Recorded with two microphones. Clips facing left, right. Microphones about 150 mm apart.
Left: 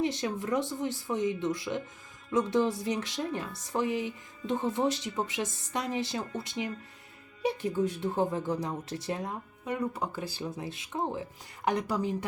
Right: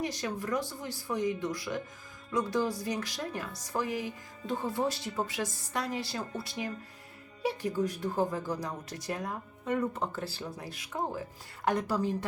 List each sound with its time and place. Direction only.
0.0 s speech: 25° left (ahead or behind)
9.6 s speech: 10° left (ahead or behind)